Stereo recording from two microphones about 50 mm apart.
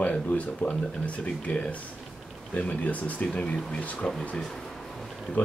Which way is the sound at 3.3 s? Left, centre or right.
Centre.